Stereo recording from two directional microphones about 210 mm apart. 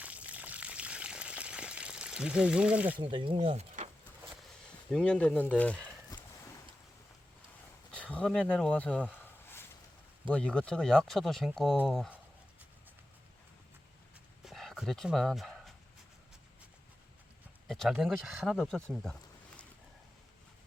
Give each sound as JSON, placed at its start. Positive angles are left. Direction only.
{"t": 0.0, "sound": "water", "side_deg": -5}
{"t": 3.0, "sound": "speech", "side_deg": -25}
{"t": 4.9, "sound": "speech", "side_deg": 5}
{"t": 6.1, "sound": "a sound", "side_deg": 20}
{"t": 7.9, "sound": "a sound", "side_deg": 5}
{"t": 10.2, "sound": "speech", "side_deg": 5}
{"t": 14.4, "sound": "dog", "side_deg": 0}
{"t": 17.7, "sound": "speech", "side_deg": 0}